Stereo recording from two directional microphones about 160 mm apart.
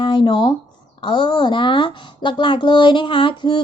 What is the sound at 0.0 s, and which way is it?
Speech, 30° left (ahead or behind).